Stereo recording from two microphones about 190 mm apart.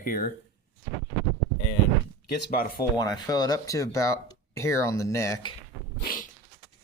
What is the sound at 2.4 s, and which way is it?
Speech, 50° left (ahead or behind).